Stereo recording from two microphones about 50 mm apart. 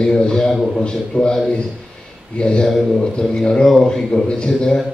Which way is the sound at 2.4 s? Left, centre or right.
Centre.